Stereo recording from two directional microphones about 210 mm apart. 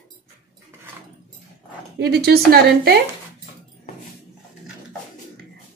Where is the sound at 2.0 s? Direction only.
50° right (ahead or behind).